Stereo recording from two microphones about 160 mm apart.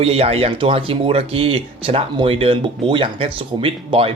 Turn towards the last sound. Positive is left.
turn(degrees=-35)  # may be behind; listen again after turning